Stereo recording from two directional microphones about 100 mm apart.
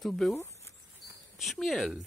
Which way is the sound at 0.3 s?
25° left (ahead or behind).